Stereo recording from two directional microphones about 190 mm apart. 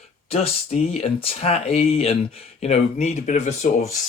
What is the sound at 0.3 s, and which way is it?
Speech, 35° left (ahead or behind).